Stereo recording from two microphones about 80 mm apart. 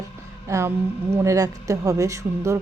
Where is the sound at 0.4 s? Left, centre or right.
Right.